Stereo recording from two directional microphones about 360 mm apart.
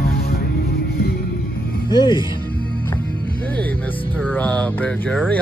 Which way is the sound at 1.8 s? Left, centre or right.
Centre.